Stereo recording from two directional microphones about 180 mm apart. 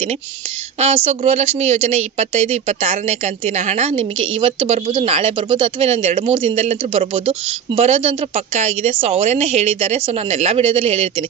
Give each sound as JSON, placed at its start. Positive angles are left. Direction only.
{"t": 0.8, "sound": "speech", "side_deg": -35}